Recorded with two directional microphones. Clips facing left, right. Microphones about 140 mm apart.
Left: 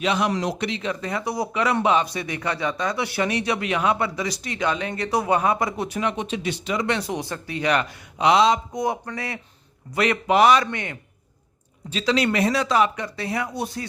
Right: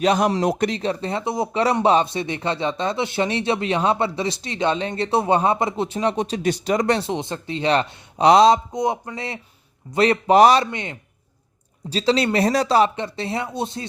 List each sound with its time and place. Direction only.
0.0 s speech: 40° right (ahead or behind)
7.0 s speech: 25° right (ahead or behind)
8.7 s speech: 20° right (ahead or behind)
10.7 s speech: 20° right (ahead or behind)
11.9 s speech: 35° right (ahead or behind)